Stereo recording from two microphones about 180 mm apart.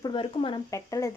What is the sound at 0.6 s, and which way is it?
Speech, 15° left (ahead or behind).